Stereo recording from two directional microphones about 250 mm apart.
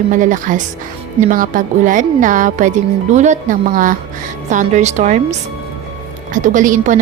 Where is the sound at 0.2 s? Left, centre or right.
Right.